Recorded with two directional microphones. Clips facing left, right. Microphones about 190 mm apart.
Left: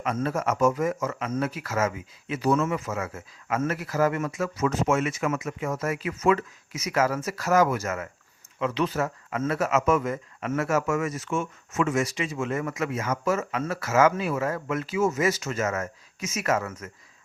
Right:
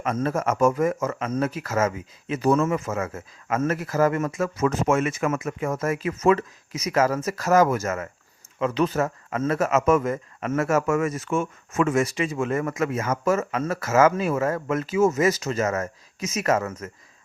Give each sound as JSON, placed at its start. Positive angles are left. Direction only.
{"t": 0.0, "sound": "speech", "side_deg": -45}